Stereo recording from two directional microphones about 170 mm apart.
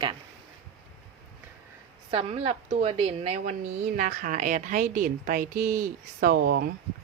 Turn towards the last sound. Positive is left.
turn(degrees=-65)  # may be behind; listen again after turning